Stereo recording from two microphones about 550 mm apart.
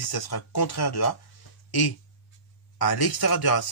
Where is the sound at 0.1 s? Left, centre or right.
Left.